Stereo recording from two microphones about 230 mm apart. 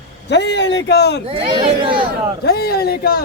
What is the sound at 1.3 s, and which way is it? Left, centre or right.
Speech, right.